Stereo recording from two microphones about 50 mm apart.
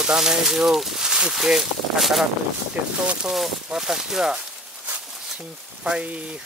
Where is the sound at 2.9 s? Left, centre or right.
Right.